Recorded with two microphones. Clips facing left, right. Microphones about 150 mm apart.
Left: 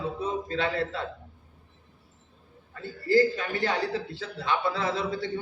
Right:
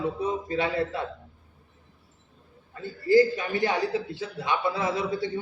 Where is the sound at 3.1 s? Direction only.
15° right (ahead or behind).